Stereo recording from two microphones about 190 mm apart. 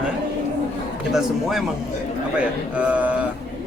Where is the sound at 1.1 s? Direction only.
Centre (ahead or behind).